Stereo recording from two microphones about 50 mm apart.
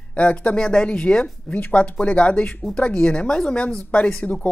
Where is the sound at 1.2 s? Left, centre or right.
Left.